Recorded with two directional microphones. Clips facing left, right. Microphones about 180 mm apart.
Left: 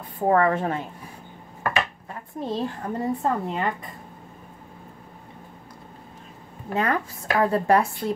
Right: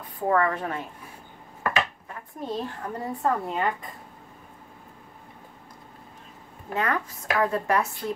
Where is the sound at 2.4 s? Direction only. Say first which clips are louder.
Left 3 dB; 25° left (ahead or behind).